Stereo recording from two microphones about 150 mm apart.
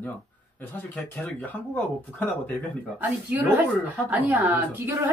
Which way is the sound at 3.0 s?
10° right (ahead or behind).